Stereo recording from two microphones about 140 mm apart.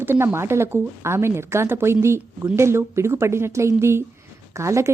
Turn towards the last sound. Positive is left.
turn(degrees=-20)  # may be behind; listen again after turning